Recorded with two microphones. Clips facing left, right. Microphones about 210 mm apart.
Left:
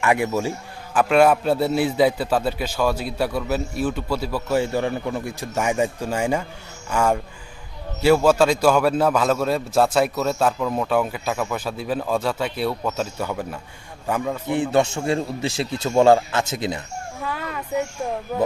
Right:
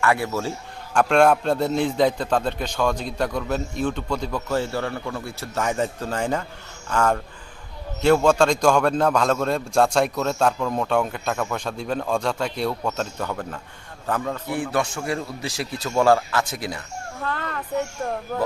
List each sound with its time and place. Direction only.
0.0 s a man's voice: 15° left (ahead or behind)
0.9 s a man's voice: 5° left (ahead or behind)
14.4 s speech: 20° left (ahead or behind)
17.2 s a man's voice: 10° left (ahead or behind)